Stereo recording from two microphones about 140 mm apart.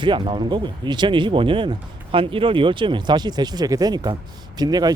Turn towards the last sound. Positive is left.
turn(degrees=-30)  # may be behind; listen again after turning